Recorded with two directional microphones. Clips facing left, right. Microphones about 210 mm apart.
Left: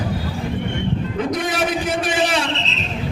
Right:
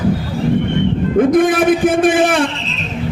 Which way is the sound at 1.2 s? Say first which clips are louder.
Right 12 dB; 50° right (ahead or behind).